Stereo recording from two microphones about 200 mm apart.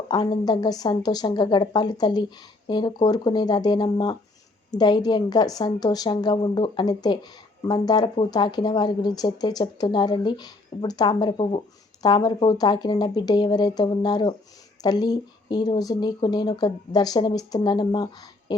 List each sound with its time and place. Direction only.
0.1 s a woman's voice: 20° left (ahead or behind)